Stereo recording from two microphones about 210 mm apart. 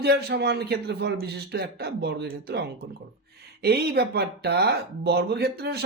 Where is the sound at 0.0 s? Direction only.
50° right (ahead or behind).